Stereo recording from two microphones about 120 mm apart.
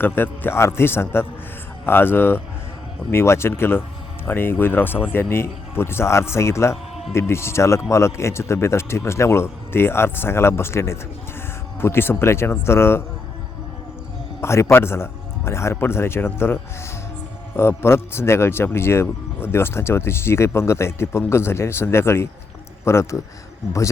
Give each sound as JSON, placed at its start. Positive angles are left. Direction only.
{"t": 0.0, "sound": "speech", "side_deg": 15}
{"t": 14.4, "sound": "speech", "side_deg": 20}
{"t": 17.6, "sound": "speech", "side_deg": 20}